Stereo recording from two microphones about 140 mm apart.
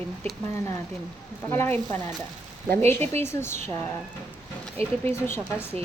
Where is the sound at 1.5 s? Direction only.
15° left (ahead or behind).